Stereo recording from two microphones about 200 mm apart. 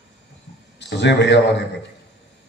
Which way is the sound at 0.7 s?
60° left (ahead or behind).